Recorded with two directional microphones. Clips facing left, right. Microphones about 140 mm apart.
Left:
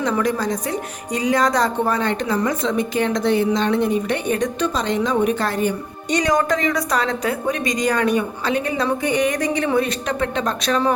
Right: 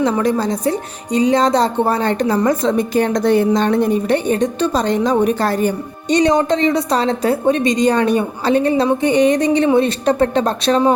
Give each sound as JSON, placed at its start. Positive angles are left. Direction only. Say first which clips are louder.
{"t": 0.0, "sound": "speech", "louder": "right 4 dB", "side_deg": -30}
{"t": 6.1, "sound": "a woman's voice", "louder": "right 5 dB", "side_deg": -25}